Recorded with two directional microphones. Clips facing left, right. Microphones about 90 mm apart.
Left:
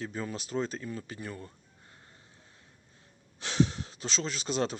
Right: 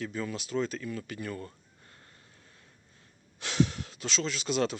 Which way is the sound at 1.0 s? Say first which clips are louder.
Right 3 dB; 20° left (ahead or behind).